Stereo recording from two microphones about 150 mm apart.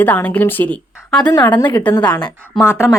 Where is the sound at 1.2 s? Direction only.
25° left (ahead or behind).